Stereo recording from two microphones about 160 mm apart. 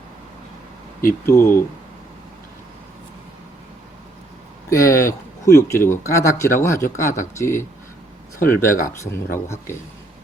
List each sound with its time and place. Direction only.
1.2 s speech: 15° left (ahead or behind)
4.7 s speech: 20° left (ahead or behind)